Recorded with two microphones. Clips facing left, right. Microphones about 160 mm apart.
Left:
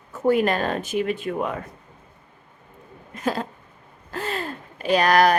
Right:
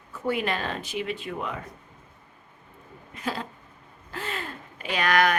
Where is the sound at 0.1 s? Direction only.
45° left (ahead or behind).